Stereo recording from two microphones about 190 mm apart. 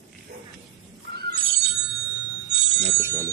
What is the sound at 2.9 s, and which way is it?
Bicycle bell, 15° right (ahead or behind).